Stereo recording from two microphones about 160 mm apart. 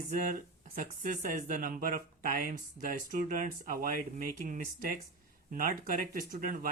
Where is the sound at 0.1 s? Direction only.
55° right (ahead or behind).